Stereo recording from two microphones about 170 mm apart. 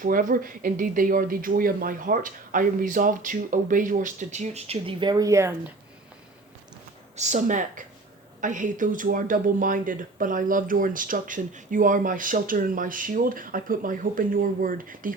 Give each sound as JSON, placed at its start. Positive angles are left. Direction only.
{"t": 0.0, "sound": "speech", "side_deg": -55}
{"t": 7.2, "sound": "speech", "side_deg": -45}